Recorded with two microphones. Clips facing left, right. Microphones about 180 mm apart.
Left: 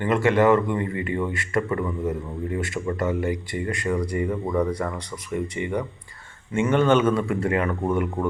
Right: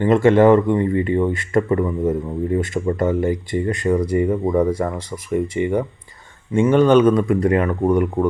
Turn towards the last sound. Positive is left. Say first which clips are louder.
# right 6 dB
turn(degrees=-15)  # may be behind; listen again after turning